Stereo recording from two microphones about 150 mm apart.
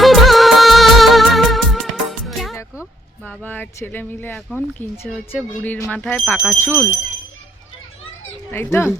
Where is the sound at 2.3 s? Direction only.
Centre (ahead or behind).